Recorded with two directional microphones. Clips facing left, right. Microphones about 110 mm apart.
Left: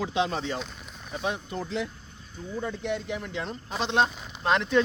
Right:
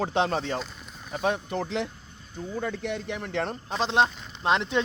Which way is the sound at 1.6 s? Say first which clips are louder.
Right 2 dB; 80° right.